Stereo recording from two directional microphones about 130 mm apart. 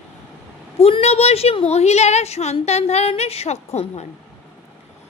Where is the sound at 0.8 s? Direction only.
50° left (ahead or behind).